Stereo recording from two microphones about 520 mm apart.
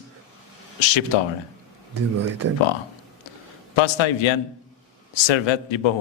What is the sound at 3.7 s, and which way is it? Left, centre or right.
Speech, left.